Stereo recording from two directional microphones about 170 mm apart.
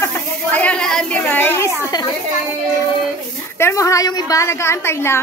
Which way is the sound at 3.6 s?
20° left (ahead or behind).